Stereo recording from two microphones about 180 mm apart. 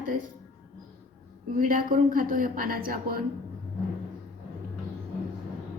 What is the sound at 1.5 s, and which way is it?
Speech, 50° right (ahead or behind).